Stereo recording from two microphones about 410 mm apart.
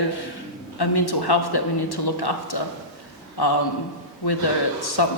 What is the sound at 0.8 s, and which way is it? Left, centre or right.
A man's voice, left.